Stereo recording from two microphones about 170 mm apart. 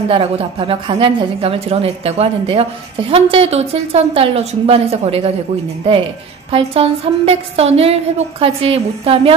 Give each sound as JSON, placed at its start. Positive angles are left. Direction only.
{"t": 0.1, "sound": "a woman's voice", "side_deg": -35}
{"t": 6.5, "sound": "a woman's voice", "side_deg": -35}